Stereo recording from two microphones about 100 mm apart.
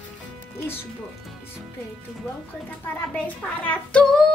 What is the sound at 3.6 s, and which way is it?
Child singing, 10° left (ahead or behind).